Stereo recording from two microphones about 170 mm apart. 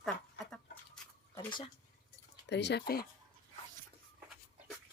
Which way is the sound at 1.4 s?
30° left (ahead or behind).